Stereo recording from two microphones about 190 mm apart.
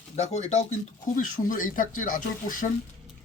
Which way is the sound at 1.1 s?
45° left (ahead or behind).